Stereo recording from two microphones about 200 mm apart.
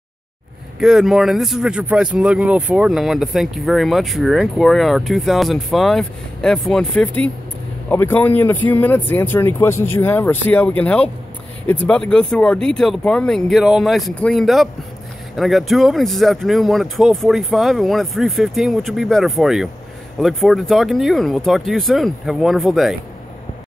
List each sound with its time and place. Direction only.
0.7 s speech: centre (ahead or behind)